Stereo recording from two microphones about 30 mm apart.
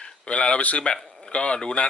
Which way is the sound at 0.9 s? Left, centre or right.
Left.